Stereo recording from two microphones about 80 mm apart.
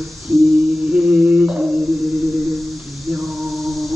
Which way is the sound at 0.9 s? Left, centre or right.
Centre.